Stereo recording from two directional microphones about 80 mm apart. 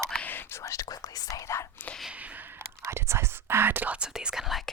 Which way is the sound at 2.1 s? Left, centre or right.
Centre.